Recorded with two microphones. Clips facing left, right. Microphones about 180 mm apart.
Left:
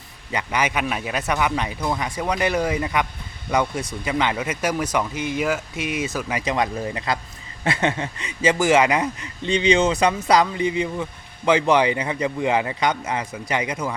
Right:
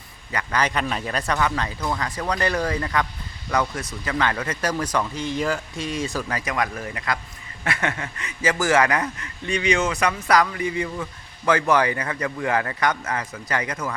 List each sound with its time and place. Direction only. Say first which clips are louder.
0.3 s speech: left 1 dB; 20° left (ahead or behind)
0.6 s speech: even; 5° left (ahead or behind)
6.0 s speech: right 1 dB; 5° left (ahead or behind)
6.3 s speech: left 3 dB; 25° left (ahead or behind)